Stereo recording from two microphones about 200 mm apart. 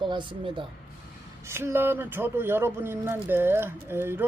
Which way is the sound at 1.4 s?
10° right (ahead or behind).